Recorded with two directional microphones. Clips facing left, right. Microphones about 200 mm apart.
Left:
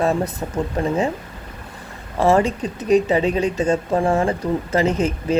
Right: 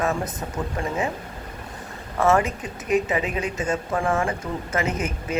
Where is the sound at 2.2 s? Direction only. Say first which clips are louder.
Left 4 dB; 30° left (ahead or behind).